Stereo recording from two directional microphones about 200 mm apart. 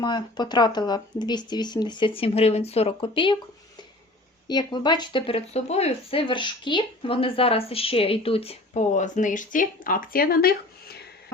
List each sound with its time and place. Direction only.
0.0 s speech: 20° left (ahead or behind)
4.4 s speech: 20° left (ahead or behind); by 10.9 s 50° left (ahead or behind)